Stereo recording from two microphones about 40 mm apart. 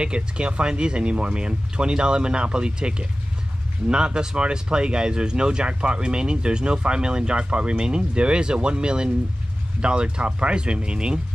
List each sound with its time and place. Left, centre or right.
0.0 s speech: right